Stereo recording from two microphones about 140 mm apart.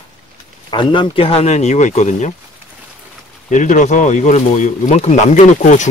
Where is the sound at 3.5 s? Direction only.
60° left (ahead or behind).